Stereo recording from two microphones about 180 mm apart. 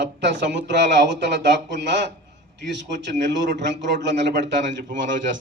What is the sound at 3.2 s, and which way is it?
A man's voice, 75° right (ahead or behind).